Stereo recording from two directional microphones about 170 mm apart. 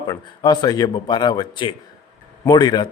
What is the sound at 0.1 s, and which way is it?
Speech, 25° left (ahead or behind).